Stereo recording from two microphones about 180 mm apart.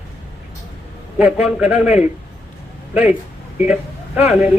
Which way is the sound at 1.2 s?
10° right (ahead or behind).